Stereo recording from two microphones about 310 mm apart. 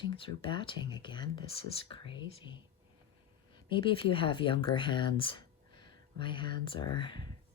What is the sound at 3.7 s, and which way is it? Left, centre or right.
Speech, centre.